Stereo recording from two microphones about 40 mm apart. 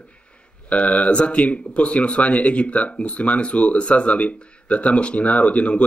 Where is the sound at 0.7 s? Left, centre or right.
Left.